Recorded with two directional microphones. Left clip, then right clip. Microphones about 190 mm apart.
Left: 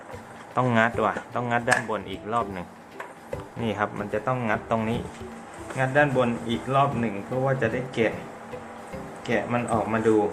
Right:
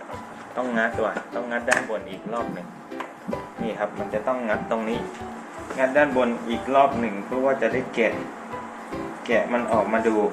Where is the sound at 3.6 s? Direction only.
35° left (ahead or behind).